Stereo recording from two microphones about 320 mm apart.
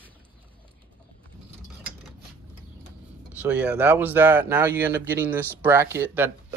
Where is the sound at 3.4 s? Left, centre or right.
Centre.